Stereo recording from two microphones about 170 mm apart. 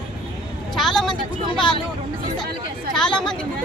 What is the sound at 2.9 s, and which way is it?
Speech, 5° left (ahead or behind).